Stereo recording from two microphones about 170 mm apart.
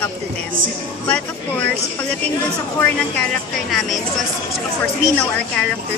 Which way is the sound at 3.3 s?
Centre (ahead or behind).